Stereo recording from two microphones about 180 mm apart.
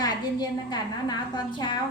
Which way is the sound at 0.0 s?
25° left (ahead or behind).